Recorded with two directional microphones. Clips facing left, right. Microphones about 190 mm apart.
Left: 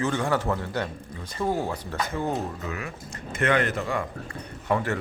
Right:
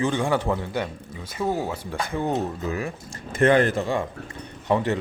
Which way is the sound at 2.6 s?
30° right (ahead or behind).